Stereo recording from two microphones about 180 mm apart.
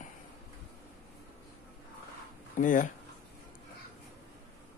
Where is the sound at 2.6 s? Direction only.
45° left (ahead or behind).